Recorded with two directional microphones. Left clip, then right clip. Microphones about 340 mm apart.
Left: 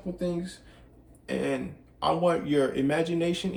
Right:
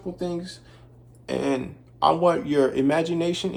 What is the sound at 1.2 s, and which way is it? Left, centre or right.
Speech, centre.